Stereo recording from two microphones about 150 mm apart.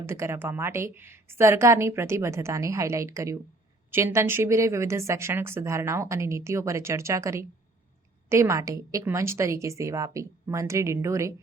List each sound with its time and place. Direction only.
0.0 s a woman's voice: 15° right (ahead or behind)